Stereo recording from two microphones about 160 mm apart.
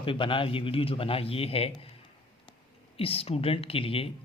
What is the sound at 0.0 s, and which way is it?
Speech, 35° left (ahead or behind).